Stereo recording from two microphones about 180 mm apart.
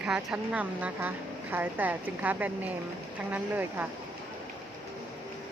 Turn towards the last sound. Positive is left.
turn(degrees=-10)  # may be behind; listen again after turning